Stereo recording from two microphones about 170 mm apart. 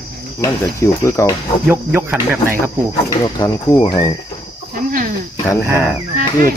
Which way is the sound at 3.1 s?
20° left (ahead or behind).